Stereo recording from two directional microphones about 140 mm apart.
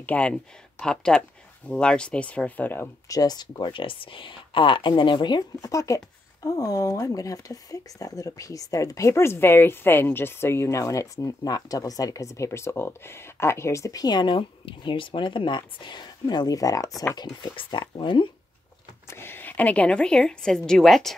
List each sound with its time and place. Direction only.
0.0 s a woman's voice: 10° left (ahead or behind)
3.1 s speech: 25° left (ahead or behind)
19.0 s a woman's voice: 15° left (ahead or behind)